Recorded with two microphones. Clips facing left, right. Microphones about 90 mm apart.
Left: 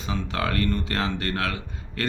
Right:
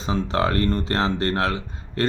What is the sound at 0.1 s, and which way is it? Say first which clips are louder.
Speech: right 5 dB; 30° right (ahead or behind).